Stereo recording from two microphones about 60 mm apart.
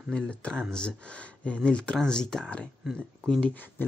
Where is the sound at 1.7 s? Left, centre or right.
Centre.